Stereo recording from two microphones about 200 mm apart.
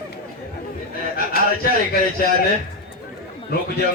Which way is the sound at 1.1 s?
50° left (ahead or behind).